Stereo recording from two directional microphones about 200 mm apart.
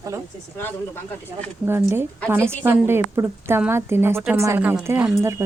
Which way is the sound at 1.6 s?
10° right (ahead or behind).